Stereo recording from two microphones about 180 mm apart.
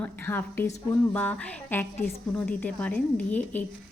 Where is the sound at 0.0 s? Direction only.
10° left (ahead or behind).